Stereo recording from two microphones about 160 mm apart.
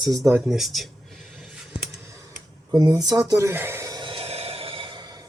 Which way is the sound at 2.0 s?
20° right (ahead or behind).